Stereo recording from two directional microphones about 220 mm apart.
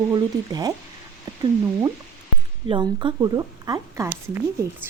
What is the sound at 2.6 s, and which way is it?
Speech, 20° right (ahead or behind).